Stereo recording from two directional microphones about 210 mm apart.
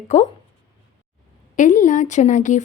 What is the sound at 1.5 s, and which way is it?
A woman's voice, 35° left (ahead or behind).